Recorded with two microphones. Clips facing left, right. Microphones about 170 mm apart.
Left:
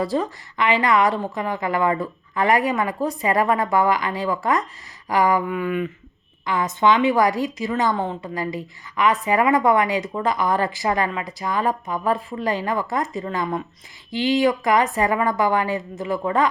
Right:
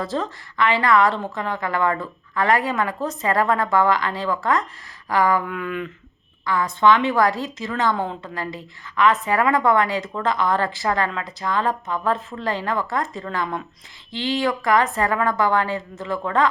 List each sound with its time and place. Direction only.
0.0 s a woman's voice: 15° left (ahead or behind)
5.5 s a sound: 5° left (ahead or behind)
6.4 s a woman's voice: 20° left (ahead or behind)